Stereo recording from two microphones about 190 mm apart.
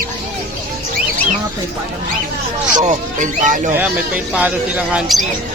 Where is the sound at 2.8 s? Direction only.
40° right (ahead or behind).